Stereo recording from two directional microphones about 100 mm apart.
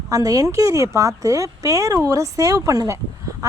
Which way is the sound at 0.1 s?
35° right (ahead or behind).